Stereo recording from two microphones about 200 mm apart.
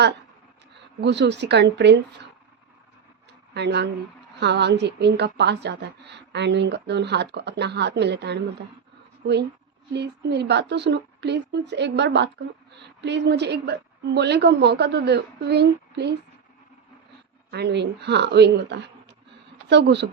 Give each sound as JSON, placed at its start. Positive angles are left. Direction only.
{"t": 1.0, "sound": "a woman's voice", "side_deg": -60}
{"t": 3.5, "sound": "a woman's voice", "side_deg": -55}
{"t": 17.5, "sound": "a woman's voice", "side_deg": -55}